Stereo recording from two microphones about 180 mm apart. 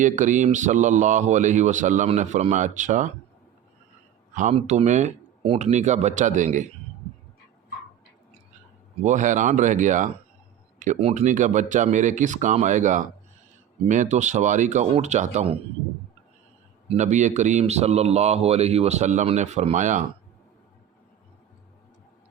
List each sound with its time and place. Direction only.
0.0 s speech: 45° right (ahead or behind)
4.4 s speech: 40° right (ahead or behind)
9.0 s speech: 45° right (ahead or behind)
16.9 s speech: 40° right (ahead or behind)